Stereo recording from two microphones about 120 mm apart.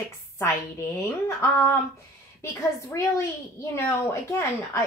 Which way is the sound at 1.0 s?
25° left (ahead or behind).